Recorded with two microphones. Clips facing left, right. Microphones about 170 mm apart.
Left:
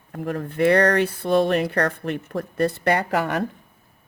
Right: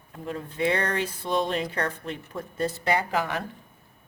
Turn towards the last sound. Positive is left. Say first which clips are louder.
# left 4 dB
turn(degrees=60)  # may be behind; listen again after turning